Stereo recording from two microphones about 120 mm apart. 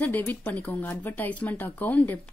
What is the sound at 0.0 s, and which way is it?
Speech, 15° left (ahead or behind).